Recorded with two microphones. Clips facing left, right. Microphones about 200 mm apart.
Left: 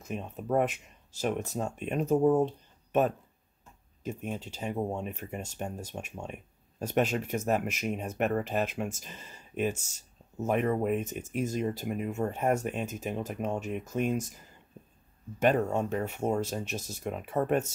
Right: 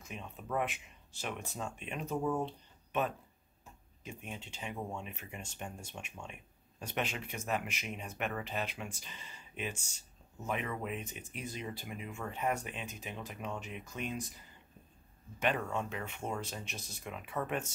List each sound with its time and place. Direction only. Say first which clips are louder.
0.0 s speech: left 9 dB; 40° left (ahead or behind)
15.3 s speech: left 8 dB; 40° left (ahead or behind)